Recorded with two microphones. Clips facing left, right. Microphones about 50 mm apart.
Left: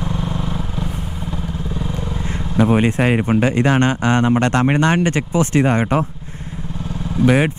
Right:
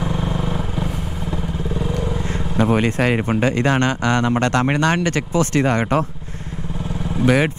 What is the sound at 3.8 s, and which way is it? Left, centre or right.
Speech, left.